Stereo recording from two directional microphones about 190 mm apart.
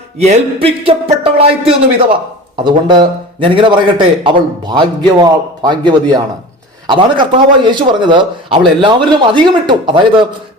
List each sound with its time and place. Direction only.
0.2 s a man's voice: 30° right (ahead or behind)